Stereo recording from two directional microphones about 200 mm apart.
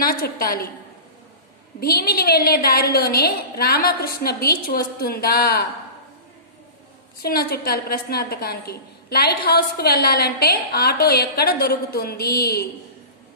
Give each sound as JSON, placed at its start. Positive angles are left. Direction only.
{"t": 0.0, "sound": "a woman's voice", "side_deg": 45}
{"t": 1.8, "sound": "a woman's voice", "side_deg": 50}
{"t": 7.2, "sound": "a woman's voice", "side_deg": 50}